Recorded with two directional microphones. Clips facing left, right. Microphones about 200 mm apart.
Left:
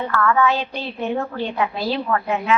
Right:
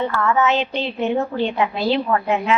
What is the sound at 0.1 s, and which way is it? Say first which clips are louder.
A woman's voice: even; 20° right (ahead or behind).